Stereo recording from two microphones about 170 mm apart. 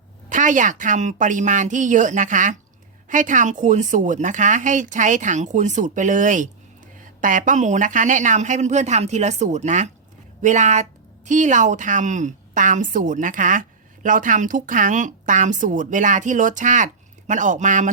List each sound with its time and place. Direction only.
0.3 s a woman's voice: 50° right (ahead or behind)